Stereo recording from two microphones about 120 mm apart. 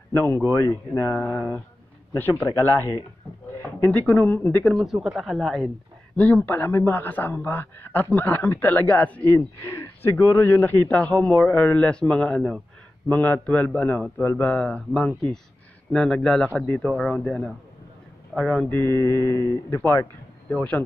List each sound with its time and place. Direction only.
0.1 s speech: 20° left (ahead or behind)
3.8 s speech: 15° left (ahead or behind)
4.7 s speech: 5° right (ahead or behind)
6.1 s speech: 15° left (ahead or behind)
18.7 s speech: 20° left (ahead or behind)
20.4 s speech: 10° left (ahead or behind)